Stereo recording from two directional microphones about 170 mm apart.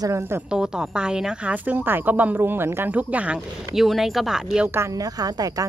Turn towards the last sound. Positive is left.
turn(degrees=-20)  # may be behind; listen again after turning